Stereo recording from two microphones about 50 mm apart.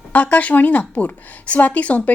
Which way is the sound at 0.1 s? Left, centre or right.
Left.